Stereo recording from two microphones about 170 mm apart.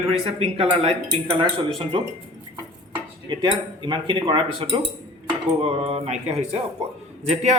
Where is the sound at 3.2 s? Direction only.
25° right (ahead or behind).